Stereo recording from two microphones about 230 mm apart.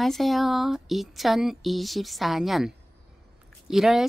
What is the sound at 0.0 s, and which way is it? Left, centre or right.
Speech, centre.